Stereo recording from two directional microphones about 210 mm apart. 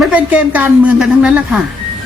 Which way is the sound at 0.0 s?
5° right (ahead or behind).